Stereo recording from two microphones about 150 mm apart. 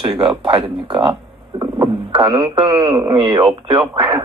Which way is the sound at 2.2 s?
25° right (ahead or behind).